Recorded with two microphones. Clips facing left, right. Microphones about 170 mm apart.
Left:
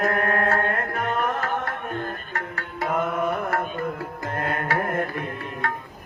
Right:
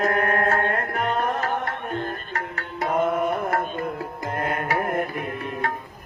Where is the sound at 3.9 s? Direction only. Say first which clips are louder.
Right 1 dB; 20° right (ahead or behind).